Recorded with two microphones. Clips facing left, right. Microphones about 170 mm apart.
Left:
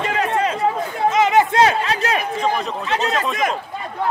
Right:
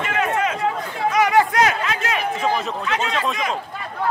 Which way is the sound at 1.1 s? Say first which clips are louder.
Left 1 dB; 25° left (ahead or behind).